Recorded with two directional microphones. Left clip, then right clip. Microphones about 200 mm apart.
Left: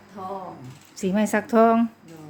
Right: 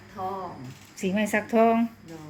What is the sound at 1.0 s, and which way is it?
Speech, 30° left (ahead or behind).